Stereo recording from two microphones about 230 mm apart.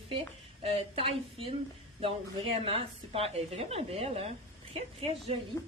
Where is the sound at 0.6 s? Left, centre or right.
Right.